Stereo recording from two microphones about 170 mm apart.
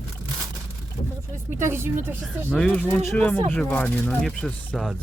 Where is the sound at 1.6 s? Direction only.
15° right (ahead or behind); by 4.9 s centre (ahead or behind).